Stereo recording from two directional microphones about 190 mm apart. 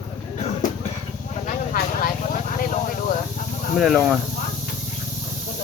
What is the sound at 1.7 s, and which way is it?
Vehicle, 45° left (ahead or behind).